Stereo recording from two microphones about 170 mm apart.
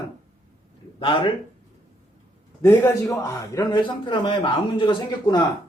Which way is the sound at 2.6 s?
20° left (ahead or behind).